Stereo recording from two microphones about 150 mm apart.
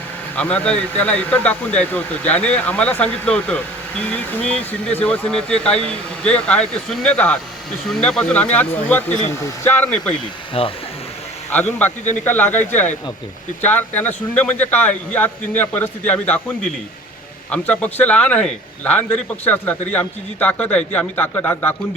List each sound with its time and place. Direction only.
0.3 s speech: 10° left (ahead or behind)
10.5 s speech: 40° left (ahead or behind)
11.8 s speech: 10° left (ahead or behind)